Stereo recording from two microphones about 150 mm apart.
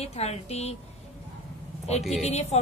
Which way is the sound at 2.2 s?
45° left (ahead or behind).